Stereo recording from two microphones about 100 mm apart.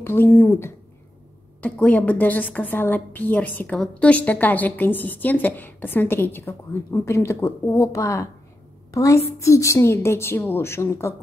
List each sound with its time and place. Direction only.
0.0 s a woman's voice: 20° left (ahead or behind)
1.6 s a woman's voice: 15° left (ahead or behind)